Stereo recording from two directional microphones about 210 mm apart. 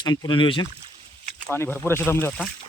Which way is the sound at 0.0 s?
20° left (ahead or behind).